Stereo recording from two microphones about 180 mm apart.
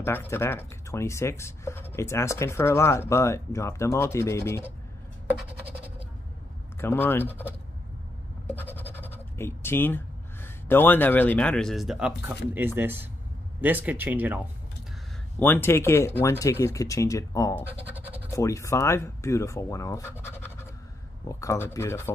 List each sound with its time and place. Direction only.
0.0 s speech: 10° left (ahead or behind)
6.8 s speech: 10° left (ahead or behind)
8.5 s scratch: 10° left (ahead or behind)
12.5 s speech: 10° right (ahead or behind)
15.3 s speech: 10° left (ahead or behind)
20.2 s scratch: 15° left (ahead or behind)
21.3 s speech: 15° left (ahead or behind)